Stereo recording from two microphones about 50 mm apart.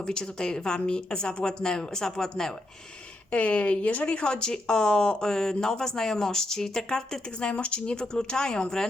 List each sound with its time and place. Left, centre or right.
0.1 s speech: centre
3.3 s speech: left